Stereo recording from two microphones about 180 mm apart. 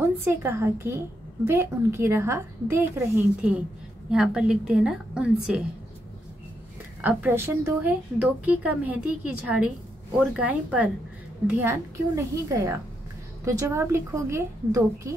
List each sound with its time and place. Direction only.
0.0 s a woman's voice: 15° right (ahead or behind)
4.1 s a woman's voice: 5° right (ahead or behind)
7.0 s a woman's voice: 10° right (ahead or behind)